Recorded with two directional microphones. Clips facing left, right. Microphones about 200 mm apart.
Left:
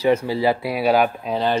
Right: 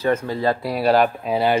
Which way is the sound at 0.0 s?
10° left (ahead or behind).